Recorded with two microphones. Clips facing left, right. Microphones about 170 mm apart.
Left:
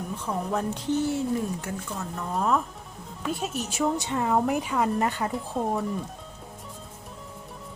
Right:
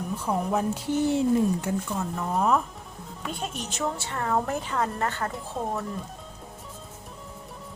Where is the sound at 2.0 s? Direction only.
Centre (ahead or behind).